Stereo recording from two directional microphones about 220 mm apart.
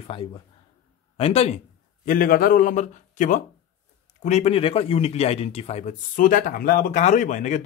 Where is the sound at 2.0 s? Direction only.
40° left (ahead or behind).